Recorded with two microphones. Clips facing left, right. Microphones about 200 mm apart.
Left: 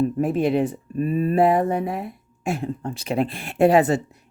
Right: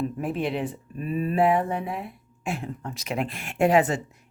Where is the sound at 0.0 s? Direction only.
40° left (ahead or behind).